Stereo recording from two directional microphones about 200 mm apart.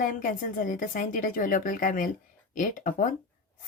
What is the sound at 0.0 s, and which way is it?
A woman's voice, 45° left (ahead or behind).